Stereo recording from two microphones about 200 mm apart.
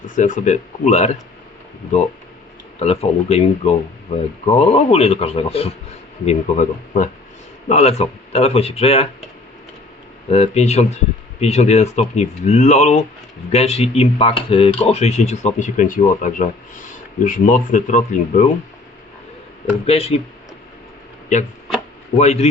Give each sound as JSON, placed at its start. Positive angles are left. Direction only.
{"t": 0.0, "sound": "speech", "side_deg": 40}
{"t": 2.7, "sound": "speech", "side_deg": 30}
{"t": 10.2, "sound": "speech", "side_deg": 30}
{"t": 19.8, "sound": "speech", "side_deg": 30}
{"t": 21.3, "sound": "speech", "side_deg": 35}